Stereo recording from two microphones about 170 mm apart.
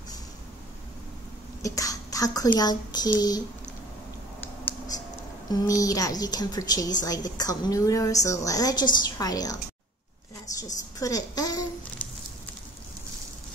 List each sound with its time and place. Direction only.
1.6 s speech: 20° left (ahead or behind)
5.5 s a woman's voice: 20° left (ahead or behind)